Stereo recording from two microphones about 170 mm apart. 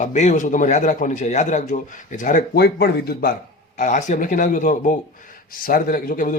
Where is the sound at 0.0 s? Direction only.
45° left (ahead or behind).